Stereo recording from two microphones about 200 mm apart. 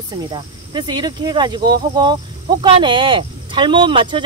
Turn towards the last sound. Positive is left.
turn(degrees=-25)  # may be behind; listen again after turning